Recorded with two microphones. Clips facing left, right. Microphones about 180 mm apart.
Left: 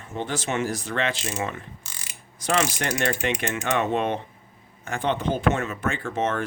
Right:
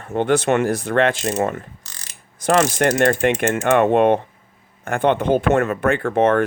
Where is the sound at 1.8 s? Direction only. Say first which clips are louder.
Even; 10° left (ahead or behind).